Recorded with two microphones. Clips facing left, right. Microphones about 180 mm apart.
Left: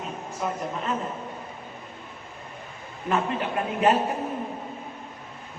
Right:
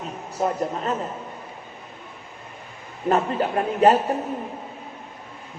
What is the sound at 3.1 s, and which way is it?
Speech, 40° right (ahead or behind).